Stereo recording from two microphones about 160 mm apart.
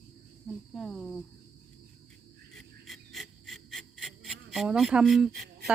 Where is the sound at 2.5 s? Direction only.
Centre (ahead or behind).